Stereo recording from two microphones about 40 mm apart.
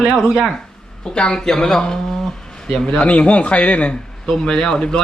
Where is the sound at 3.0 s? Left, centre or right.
Left.